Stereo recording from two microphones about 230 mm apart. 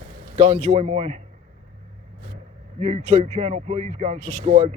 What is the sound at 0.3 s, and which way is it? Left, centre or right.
Speech, right.